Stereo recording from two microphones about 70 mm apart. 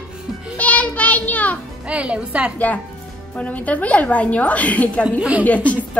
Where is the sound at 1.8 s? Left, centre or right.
Centre.